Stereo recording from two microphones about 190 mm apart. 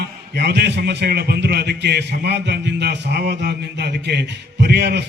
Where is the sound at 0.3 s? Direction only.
60° right (ahead or behind).